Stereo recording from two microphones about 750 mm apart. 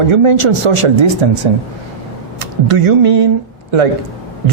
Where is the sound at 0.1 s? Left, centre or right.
Right.